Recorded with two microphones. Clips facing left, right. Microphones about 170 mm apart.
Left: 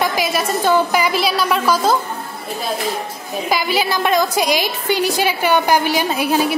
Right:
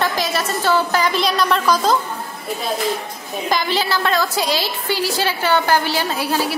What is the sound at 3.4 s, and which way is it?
A woman's voice, 10° left (ahead or behind).